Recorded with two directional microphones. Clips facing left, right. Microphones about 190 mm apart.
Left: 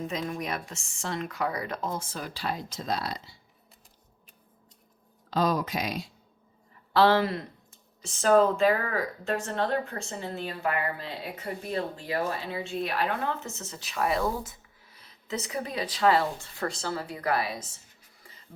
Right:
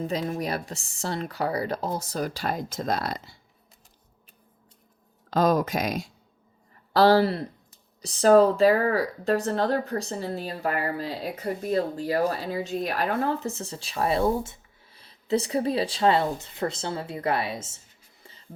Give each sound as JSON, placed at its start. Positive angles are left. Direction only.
{"t": 0.0, "sound": "speech", "side_deg": -35}
{"t": 5.3, "sound": "speech", "side_deg": -50}
{"t": 18.2, "sound": "music", "side_deg": -25}